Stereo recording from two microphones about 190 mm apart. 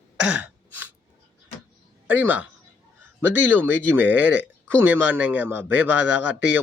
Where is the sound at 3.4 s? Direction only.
10° right (ahead or behind).